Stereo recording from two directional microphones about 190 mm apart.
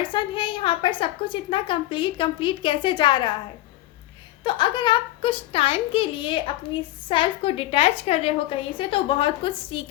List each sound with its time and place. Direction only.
0.0 s a woman's voice: 25° left (ahead or behind)
4.4 s a woman's voice: 25° left (ahead or behind)